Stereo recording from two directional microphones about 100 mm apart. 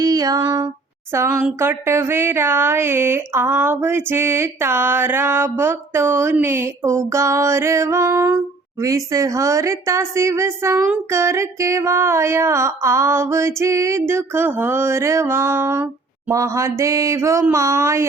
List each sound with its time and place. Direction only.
0.0 s female singing: 40° right (ahead or behind)
1.1 s a woman's voice: 30° right (ahead or behind)